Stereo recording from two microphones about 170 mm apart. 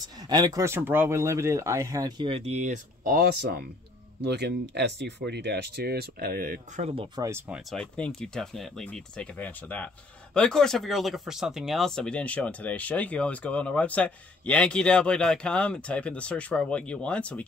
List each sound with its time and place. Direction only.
0.3 s speech: 20° right (ahead or behind); by 3.6 s 65° right (ahead or behind)
4.2 s speech: 80° right; by 6.9 s 55° right (ahead or behind)
7.2 s speech: 15° right (ahead or behind)
7.7 s speech: 5° left (ahead or behind)